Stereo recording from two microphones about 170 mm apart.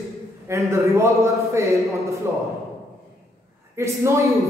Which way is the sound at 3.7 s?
15° right (ahead or behind).